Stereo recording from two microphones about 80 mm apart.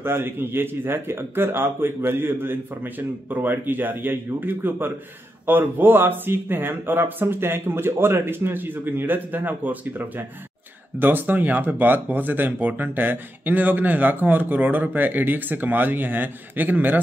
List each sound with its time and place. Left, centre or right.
0.0 s speech: right